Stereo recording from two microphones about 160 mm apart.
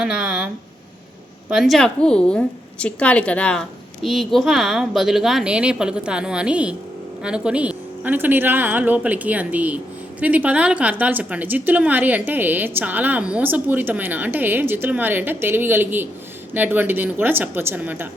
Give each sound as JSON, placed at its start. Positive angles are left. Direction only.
{"t": 0.0, "sound": "a woman's voice", "side_deg": -5}